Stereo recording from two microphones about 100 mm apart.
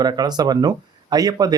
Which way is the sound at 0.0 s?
45° right (ahead or behind).